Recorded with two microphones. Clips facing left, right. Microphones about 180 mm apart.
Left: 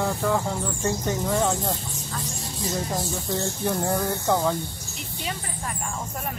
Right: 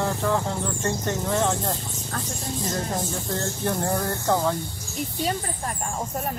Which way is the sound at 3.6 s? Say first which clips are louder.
Even; 5° left (ahead or behind).